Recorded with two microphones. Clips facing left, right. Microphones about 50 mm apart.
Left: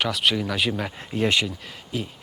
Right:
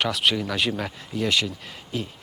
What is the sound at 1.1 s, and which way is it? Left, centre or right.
Speech, left.